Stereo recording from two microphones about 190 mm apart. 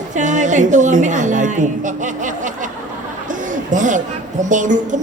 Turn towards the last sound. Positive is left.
turn(degrees=-40)  # may be behind; listen again after turning